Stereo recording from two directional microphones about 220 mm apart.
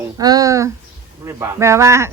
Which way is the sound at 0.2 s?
15° right (ahead or behind).